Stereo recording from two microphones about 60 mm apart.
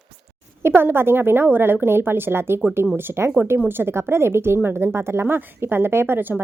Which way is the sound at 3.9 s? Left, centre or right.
Right.